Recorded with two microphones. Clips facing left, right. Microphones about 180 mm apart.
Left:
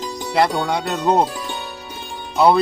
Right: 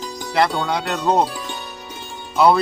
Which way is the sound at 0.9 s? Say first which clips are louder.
Left 1 dB; 10° left (ahead or behind).